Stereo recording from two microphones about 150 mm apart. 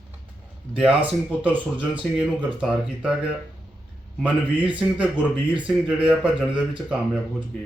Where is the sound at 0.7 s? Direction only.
5° right (ahead or behind).